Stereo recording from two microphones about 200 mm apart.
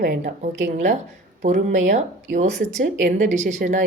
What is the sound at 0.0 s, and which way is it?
A woman's voice, 45° right (ahead or behind).